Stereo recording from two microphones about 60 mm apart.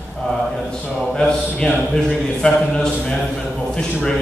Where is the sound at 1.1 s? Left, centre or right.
Centre.